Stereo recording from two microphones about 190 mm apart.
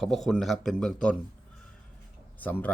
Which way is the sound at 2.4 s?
10° left (ahead or behind).